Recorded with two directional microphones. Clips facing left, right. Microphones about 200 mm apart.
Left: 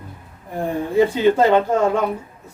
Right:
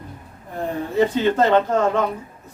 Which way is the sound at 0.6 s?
10° left (ahead or behind).